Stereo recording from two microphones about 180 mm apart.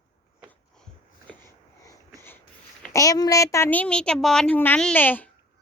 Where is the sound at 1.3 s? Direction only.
20° right (ahead or behind).